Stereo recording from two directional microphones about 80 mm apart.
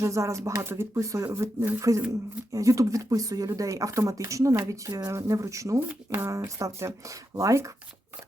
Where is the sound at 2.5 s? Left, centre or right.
Right.